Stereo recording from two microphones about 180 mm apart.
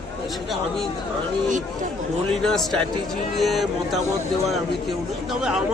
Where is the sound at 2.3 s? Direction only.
Centre (ahead or behind).